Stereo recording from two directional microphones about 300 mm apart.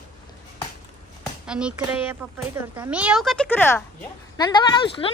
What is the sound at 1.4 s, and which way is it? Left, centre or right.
Speech, centre.